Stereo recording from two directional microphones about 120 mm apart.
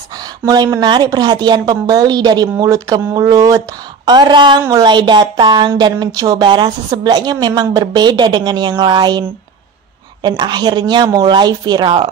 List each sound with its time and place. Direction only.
0.5 s a woman's voice: 30° right (ahead or behind)
10.2 s a woman's voice: 40° right (ahead or behind)